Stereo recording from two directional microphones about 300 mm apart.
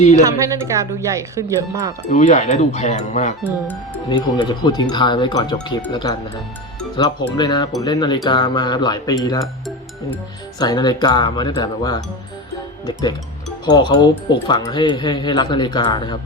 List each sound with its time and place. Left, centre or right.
0.2 s speech: centre
2.1 s speech: left
4.4 s speech: centre
10.6 s speech: centre